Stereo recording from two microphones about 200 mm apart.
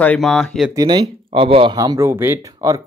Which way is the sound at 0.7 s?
20° right (ahead or behind).